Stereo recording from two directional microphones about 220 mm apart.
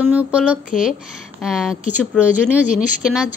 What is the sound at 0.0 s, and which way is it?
Speech, 5° right (ahead or behind).